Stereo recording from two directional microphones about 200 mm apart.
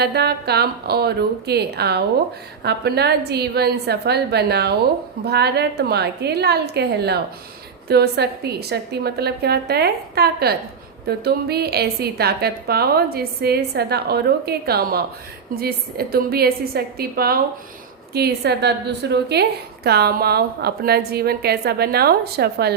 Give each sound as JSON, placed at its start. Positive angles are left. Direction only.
{"t": 0.0, "sound": "a woman's voice", "side_deg": -55}